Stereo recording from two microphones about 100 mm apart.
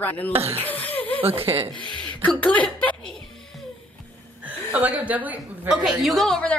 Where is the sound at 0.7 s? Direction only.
15° left (ahead or behind).